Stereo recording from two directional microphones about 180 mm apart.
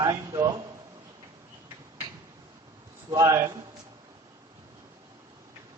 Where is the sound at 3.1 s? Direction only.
15° right (ahead or behind).